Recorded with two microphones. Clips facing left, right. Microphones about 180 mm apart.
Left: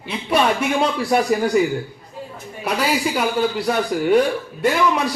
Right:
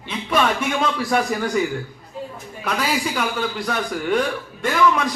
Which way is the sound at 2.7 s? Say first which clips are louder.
Left 3 dB; 30° left (ahead or behind).